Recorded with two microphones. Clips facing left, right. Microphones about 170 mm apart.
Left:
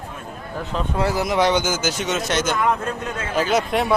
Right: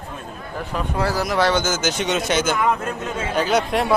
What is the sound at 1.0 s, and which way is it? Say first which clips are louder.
A man's voice: left 1 dB; 20° left (ahead or behind).